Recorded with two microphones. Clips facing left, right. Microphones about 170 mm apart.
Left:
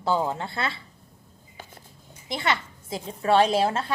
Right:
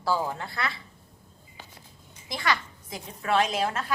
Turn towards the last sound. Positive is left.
turn(degrees=30)  # may be behind; listen again after turning